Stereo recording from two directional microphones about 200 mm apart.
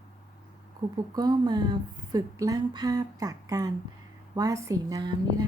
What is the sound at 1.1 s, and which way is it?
Speech, 20° right (ahead or behind).